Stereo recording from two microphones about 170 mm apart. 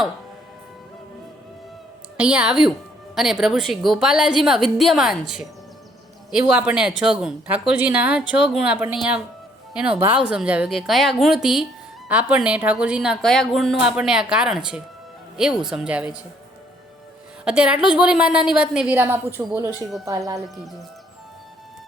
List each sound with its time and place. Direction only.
2.1 s a woman's voice: 5° right (ahead or behind)
6.5 s a woman's voice: 5° right (ahead or behind)
17.4 s a woman's voice: 5° right (ahead or behind)